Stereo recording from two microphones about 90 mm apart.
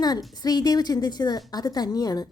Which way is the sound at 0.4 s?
45° left (ahead or behind).